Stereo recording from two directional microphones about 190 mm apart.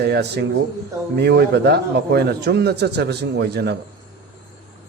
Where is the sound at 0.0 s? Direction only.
60° right (ahead or behind).